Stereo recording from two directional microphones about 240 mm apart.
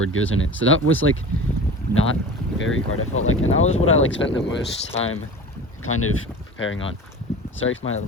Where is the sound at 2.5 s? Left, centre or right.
Left.